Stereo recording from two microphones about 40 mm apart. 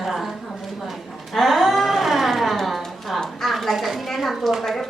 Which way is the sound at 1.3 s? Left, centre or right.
Centre.